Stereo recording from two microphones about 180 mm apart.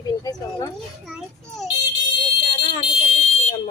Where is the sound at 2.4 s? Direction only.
30° left (ahead or behind).